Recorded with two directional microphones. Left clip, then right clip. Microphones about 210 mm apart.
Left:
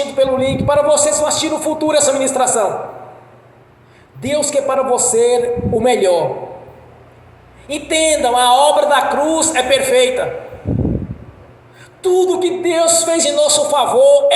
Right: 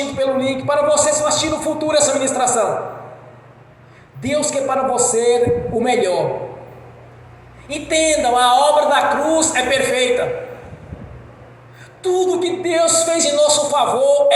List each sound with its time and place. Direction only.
0.2 s speech: 50° left (ahead or behind)
4.2 s speech: 55° left (ahead or behind)
7.7 s speech: 55° left (ahead or behind)
12.0 s speech: 55° left (ahead or behind)